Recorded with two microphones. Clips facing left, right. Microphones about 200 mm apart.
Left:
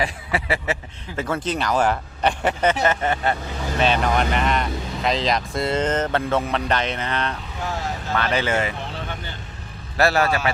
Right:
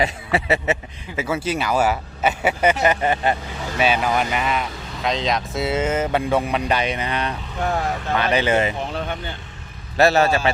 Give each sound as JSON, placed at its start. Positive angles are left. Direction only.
{"t": 0.0, "sound": "speech", "side_deg": -25}
{"t": 1.1, "sound": "speech", "side_deg": -5}
{"t": 10.0, "sound": "speech", "side_deg": -25}